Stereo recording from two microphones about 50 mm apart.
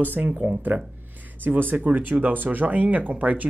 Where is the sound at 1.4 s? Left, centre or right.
Right.